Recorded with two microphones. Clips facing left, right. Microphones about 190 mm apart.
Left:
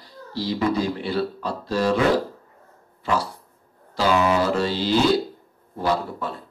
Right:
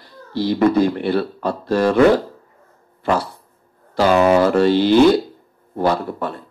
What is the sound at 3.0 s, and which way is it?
Dog, 55° right (ahead or behind).